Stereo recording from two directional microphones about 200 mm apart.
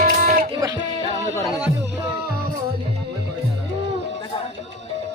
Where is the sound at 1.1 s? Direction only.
15° left (ahead or behind).